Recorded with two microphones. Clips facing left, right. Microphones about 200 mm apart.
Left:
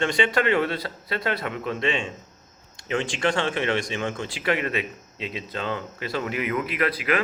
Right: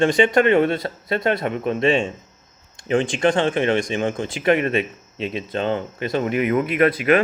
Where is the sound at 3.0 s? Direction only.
20° right (ahead or behind).